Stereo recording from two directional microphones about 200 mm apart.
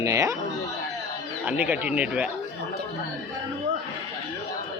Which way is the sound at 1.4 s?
5° right (ahead or behind).